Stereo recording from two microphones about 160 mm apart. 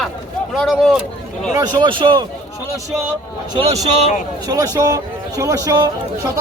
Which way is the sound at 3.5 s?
40° right (ahead or behind).